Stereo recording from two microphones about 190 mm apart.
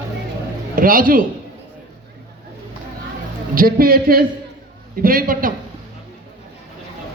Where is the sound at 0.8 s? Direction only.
45° right (ahead or behind).